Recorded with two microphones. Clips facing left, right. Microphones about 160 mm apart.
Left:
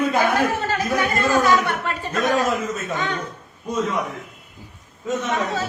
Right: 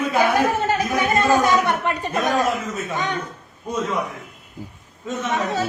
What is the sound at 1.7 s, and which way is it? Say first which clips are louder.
Speech: right 3 dB; 15° right (ahead or behind).